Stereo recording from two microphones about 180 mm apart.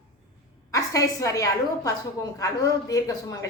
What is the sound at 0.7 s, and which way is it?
A woman's voice, 20° left (ahead or behind).